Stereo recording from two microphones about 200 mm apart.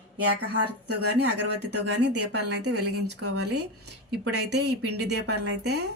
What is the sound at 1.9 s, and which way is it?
A woman's voice, 60° right (ahead or behind).